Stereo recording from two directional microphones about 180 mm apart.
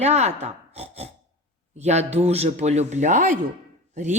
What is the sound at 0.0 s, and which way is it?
A woman's voice, 35° right (ahead or behind).